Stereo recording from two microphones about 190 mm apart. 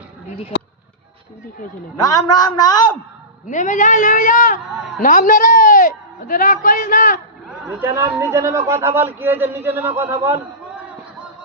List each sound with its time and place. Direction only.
2.0 s a man's voice: 20° left (ahead or behind)
3.4 s a man's voice: 40° left (ahead or behind)
7.7 s speech: 10° right (ahead or behind)